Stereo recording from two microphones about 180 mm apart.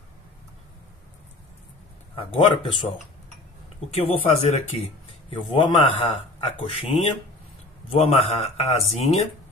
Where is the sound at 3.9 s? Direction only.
35° left (ahead or behind).